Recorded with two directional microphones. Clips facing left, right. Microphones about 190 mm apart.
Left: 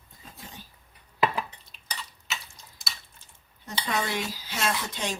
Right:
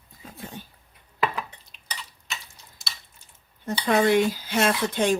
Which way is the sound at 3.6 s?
55° right (ahead or behind).